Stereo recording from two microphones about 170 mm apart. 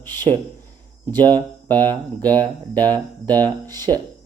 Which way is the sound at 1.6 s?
25° right (ahead or behind).